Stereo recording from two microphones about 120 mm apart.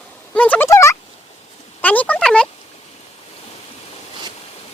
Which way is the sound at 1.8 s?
10° left (ahead or behind).